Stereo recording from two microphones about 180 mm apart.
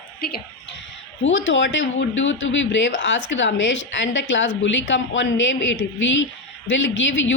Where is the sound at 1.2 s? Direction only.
90° left.